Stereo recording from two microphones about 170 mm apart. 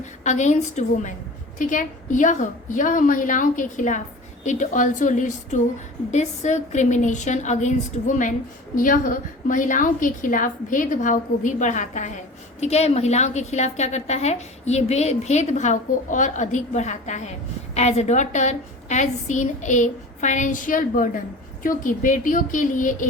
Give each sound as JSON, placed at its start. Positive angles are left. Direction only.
{"t": 0.0, "sound": "a woman's voice", "side_deg": 45}